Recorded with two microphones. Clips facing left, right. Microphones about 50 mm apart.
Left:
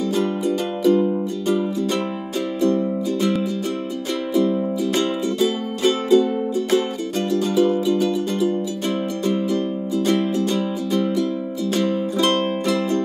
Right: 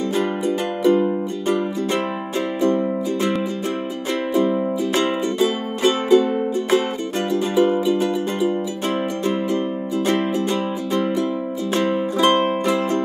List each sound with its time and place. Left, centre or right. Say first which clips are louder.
0.8 s music: even; right
2.6 s music: even; right